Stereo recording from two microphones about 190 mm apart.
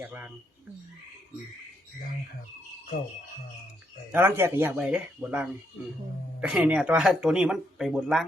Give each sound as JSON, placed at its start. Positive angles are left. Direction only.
{"t": 0.0, "sound": "speech", "side_deg": -10}
{"t": 4.1, "sound": "speech", "side_deg": -10}